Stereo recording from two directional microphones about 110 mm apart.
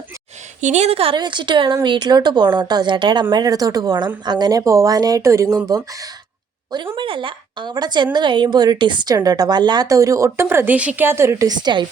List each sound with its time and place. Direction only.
0.6 s a woman's voice: 90° right; by 1.1 s 65° right (ahead or behind)
1.1 s a woman's voice: 45° right (ahead or behind)
6.9 s a woman's voice: 50° right (ahead or behind); by 11.4 s 25° right (ahead or behind)
11.4 s a woman's voice: 40° right (ahead or behind)